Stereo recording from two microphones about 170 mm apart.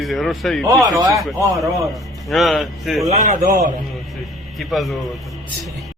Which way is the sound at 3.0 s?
45° right (ahead or behind).